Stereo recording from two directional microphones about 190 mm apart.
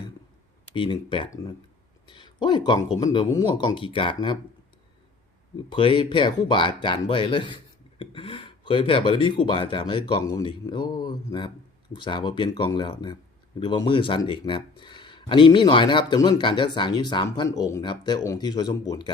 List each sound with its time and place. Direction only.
0.7 s speech: 25° left (ahead or behind)
5.6 s speech: 25° left (ahead or behind)